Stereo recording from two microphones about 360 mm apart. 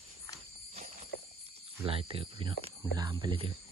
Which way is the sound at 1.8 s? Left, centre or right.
Centre.